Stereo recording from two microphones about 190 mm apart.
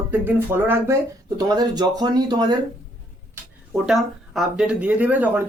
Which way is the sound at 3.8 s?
5° right (ahead or behind).